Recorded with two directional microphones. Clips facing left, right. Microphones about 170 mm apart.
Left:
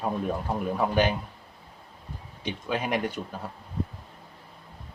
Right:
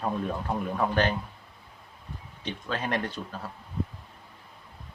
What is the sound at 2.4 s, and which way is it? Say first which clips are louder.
Speech: left 3 dB; 10° left (ahead or behind).